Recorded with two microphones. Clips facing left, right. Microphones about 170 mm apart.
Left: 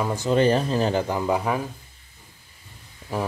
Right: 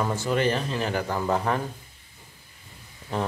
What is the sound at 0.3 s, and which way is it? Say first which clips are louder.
Speech: left 7 dB; 30° left (ahead or behind).